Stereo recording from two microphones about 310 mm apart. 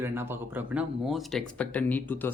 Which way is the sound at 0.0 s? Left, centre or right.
Centre.